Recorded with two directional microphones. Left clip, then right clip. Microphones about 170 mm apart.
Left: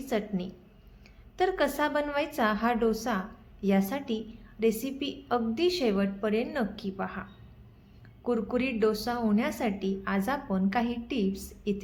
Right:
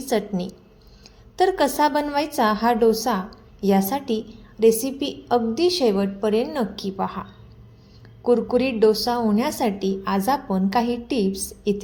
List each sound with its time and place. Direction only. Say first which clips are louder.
0.1 s a woman's voice: right 8 dB; 20° right (ahead or behind)
8.3 s a woman's voice: right 10 dB; 15° right (ahead or behind)